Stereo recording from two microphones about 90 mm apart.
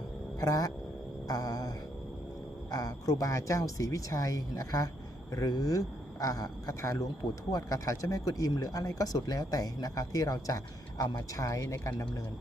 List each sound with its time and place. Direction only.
0.3 s speech: 40° left (ahead or behind)
1.3 s mantra: 45° left (ahead or behind)
2.6 s speech: 40° left (ahead or behind)